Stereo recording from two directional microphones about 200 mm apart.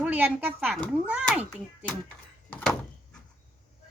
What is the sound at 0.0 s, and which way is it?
Speech, 5° right (ahead or behind).